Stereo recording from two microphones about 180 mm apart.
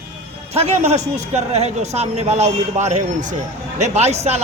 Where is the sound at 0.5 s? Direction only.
35° right (ahead or behind).